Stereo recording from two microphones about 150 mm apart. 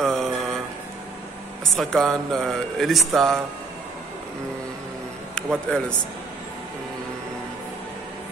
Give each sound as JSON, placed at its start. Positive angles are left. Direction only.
{"t": 0.0, "sound": "mantra", "side_deg": 0}
{"t": 1.6, "sound": "speech", "side_deg": 5}
{"t": 5.3, "sound": "a sound", "side_deg": 5}